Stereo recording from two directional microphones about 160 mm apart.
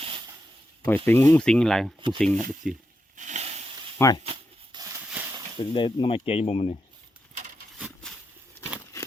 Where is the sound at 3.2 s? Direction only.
45° right (ahead or behind).